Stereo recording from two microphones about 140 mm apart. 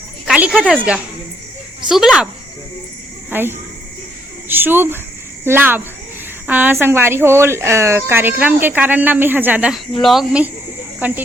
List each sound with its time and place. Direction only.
0.3 s a sound: 10° right (ahead or behind)
1.9 s speech: 5° right (ahead or behind)
3.2 s speech: 15° right (ahead or behind)
11.0 s speech: 15° right (ahead or behind)